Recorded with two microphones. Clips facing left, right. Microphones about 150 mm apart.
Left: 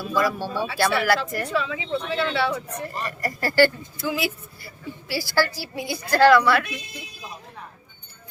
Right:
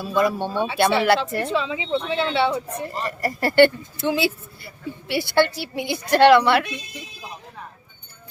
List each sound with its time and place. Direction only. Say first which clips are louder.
0.0 s speech: right 3 dB; 25° right (ahead or behind)